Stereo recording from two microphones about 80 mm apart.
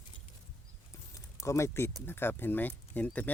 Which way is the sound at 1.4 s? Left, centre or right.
Left.